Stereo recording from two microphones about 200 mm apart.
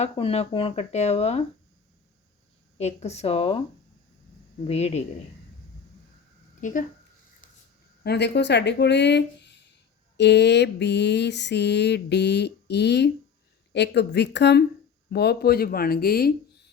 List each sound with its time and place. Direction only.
0.0 s speech: 30° left (ahead or behind)
2.7 s speech: 35° left (ahead or behind)
4.6 s speech: 30° left (ahead or behind)
6.6 s speech: 40° left (ahead or behind)
7.4 s a sound: 40° left (ahead or behind)
8.0 s a sound: 55° left (ahead or behind)
15.1 s speech: 55° left (ahead or behind)